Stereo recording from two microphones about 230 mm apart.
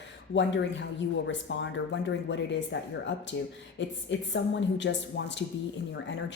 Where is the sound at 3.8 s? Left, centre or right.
Left.